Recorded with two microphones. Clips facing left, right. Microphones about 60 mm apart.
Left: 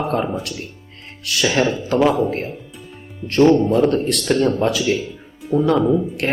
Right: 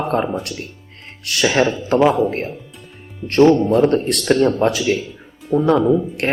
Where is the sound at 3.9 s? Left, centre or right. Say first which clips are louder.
Right 2 dB; right.